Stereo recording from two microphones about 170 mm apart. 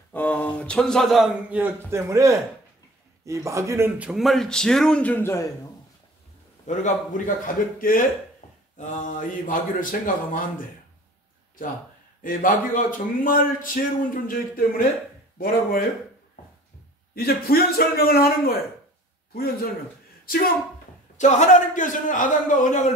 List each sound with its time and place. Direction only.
0.1 s a man's voice: 10° left (ahead or behind); by 4.1 s 15° right (ahead or behind)
4.1 s a man's voice: centre (ahead or behind); by 5.5 s 15° left (ahead or behind)
6.6 s speech: 45° left (ahead or behind)
12.2 s a man's voice: 55° left (ahead or behind)
17.1 s a man's voice: 60° left (ahead or behind)
21.2 s speech: 45° left (ahead or behind)